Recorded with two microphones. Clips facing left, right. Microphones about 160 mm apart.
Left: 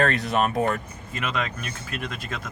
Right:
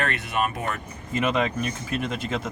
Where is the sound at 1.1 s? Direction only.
20° right (ahead or behind).